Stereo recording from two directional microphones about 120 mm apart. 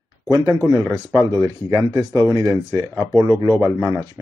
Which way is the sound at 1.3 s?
30° right (ahead or behind).